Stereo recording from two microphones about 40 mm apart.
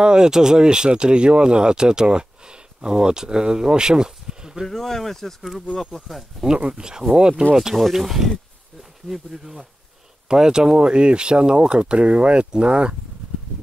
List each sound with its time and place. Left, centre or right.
0.0 s speech: centre
4.6 s speech: centre
6.7 s speech: centre
7.9 s speech: centre; by 12.9 s right